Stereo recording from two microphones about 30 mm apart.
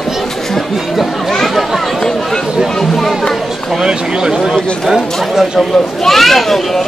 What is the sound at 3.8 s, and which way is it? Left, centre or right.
Speech, right.